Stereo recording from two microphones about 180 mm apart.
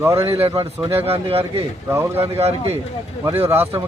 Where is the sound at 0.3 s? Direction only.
30° right (ahead or behind).